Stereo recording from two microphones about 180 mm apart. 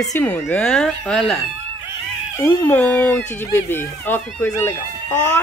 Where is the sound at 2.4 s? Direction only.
10° left (ahead or behind).